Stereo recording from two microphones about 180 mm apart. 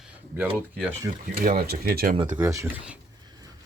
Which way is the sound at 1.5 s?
60° right (ahead or behind).